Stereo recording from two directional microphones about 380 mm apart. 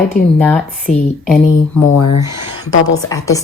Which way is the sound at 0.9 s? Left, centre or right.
Centre.